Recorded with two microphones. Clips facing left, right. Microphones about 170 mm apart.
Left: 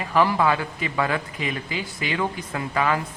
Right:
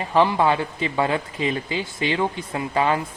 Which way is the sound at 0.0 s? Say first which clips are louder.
Right 2 dB; 25° right (ahead or behind).